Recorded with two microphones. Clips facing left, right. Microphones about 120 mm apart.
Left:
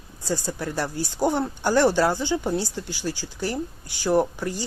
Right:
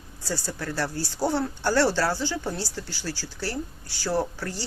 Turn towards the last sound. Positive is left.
turn(degrees=15)  # may be behind; listen again after turning